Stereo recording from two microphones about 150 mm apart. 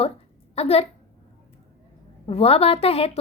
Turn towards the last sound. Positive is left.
turn(degrees=40)  # may be behind; listen again after turning